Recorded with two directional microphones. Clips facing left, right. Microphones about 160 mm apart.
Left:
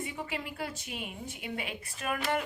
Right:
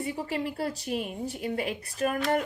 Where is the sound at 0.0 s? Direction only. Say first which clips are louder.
Right 7 dB; 40° right (ahead or behind).